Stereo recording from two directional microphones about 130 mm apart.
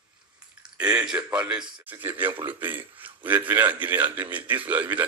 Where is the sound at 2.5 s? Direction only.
15° right (ahead or behind).